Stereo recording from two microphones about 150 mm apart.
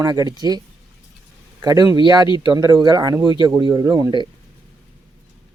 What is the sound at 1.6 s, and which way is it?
Speech, 25° right (ahead or behind).